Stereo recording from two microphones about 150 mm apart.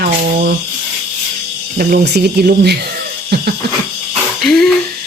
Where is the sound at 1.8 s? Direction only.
85° right.